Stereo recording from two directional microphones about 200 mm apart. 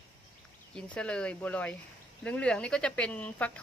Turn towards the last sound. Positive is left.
turn(degrees=5)  # may be behind; listen again after turning